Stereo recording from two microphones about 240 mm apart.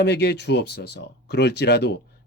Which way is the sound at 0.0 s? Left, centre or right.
Left.